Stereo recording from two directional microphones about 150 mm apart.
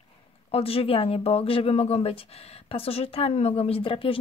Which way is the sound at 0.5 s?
40° left (ahead or behind).